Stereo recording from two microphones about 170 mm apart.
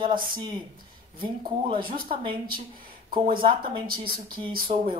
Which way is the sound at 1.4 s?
30° right (ahead or behind).